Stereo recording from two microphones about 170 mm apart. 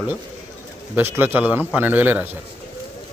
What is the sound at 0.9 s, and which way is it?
Speech, 10° right (ahead or behind).